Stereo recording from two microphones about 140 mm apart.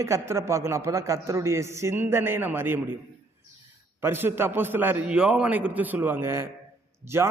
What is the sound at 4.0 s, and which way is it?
A man's voice, 15° right (ahead or behind).